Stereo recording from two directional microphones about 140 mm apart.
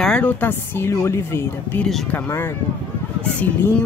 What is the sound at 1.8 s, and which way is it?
Speech, 5° left (ahead or behind).